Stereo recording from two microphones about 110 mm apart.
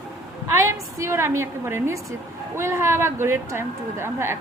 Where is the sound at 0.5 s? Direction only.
25° right (ahead or behind).